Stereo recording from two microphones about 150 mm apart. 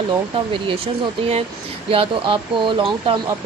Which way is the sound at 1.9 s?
35° right (ahead or behind).